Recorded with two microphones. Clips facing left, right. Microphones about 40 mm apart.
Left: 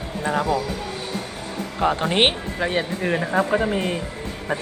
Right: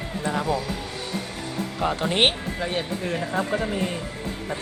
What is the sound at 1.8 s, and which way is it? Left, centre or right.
Speech, left.